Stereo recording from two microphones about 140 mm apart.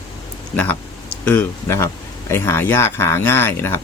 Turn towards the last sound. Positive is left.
turn(degrees=15)  # may be behind; listen again after turning